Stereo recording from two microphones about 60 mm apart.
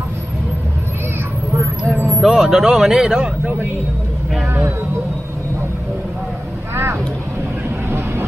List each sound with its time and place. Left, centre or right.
1.9 s vehicle: right
2.2 s speech: centre
6.7 s vehicle: right